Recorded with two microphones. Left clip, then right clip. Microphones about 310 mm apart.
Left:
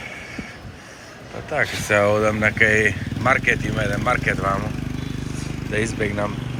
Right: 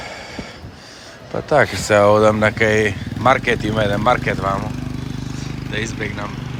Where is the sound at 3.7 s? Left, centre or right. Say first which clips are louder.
Right 5 dB; centre.